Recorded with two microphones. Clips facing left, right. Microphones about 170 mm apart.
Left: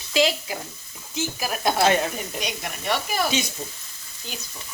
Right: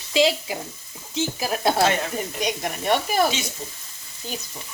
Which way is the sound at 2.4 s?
45° right (ahead or behind).